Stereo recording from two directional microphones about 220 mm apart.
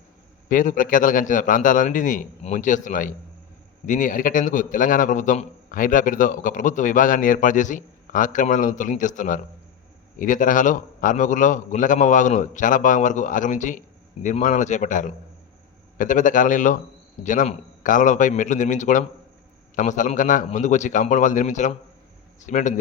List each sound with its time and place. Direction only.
0.4 s a man's voice: 35° left (ahead or behind)